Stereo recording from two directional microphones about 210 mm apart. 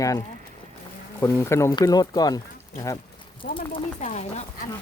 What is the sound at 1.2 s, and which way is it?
Speech, 15° left (ahead or behind).